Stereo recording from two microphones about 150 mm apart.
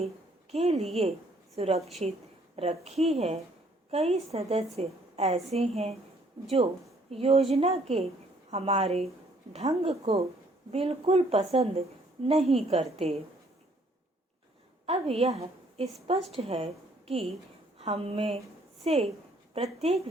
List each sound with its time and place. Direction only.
0.5 s a woman's voice: 45° right (ahead or behind)
7.1 s a woman's voice: 40° right (ahead or behind)
14.8 s a woman's voice: 40° right (ahead or behind)